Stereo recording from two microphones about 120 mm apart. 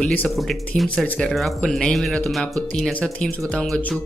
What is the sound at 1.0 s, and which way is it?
Speech, 10° left (ahead or behind).